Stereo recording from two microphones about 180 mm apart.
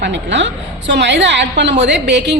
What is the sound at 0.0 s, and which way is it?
A woman's voice, 80° right.